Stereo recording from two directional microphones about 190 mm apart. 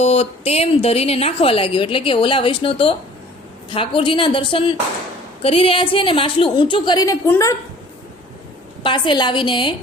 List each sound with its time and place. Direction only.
0.0 s a woman's voice: 35° left (ahead or behind); by 7.5 s 15° left (ahead or behind)
8.8 s a woman's voice: 25° left (ahead or behind)